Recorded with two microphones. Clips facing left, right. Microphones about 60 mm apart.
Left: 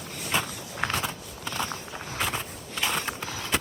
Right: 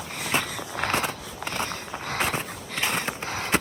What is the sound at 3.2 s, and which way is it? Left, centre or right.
Run, right.